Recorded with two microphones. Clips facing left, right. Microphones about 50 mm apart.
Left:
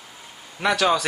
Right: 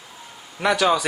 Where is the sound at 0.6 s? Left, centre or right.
Centre.